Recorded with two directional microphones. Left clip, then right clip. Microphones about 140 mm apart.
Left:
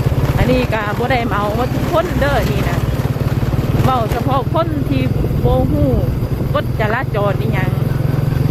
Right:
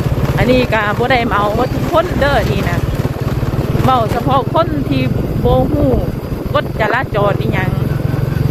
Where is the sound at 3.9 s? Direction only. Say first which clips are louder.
Right 4 dB; 30° right (ahead or behind).